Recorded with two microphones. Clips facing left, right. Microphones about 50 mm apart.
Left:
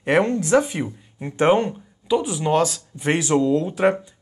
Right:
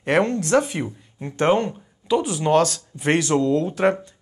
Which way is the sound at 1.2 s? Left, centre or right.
Centre.